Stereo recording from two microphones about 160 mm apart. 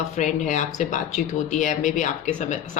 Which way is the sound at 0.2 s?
50° left (ahead or behind).